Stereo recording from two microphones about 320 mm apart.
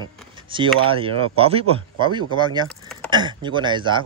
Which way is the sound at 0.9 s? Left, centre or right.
Centre.